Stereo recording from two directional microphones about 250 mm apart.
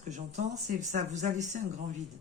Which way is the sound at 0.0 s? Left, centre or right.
Right.